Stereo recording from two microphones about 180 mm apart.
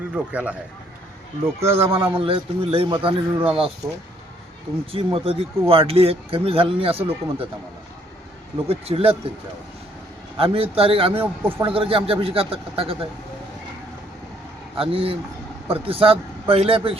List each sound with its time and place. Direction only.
0.3 s a man's voice: 5° right (ahead or behind)
1.9 s a man's voice: 30° right (ahead or behind)
4.9 s speech: 30° right (ahead or behind)
8.6 s speech: 30° right (ahead or behind)
10.3 s speech: 30° right (ahead or behind)
14.8 s speech: 30° right (ahead or behind)